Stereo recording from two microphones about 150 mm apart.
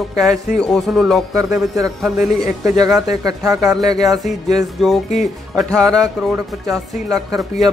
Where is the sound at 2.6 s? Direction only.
25° right (ahead or behind).